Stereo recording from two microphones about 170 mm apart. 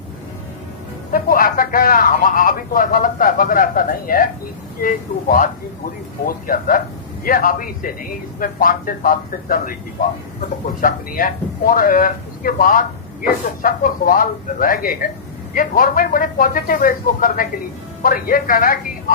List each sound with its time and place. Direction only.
1.1 s speech: 55° left (ahead or behind)